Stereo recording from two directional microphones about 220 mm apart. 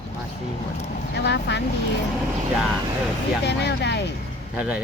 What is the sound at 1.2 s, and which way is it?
Speech, 50° left (ahead or behind).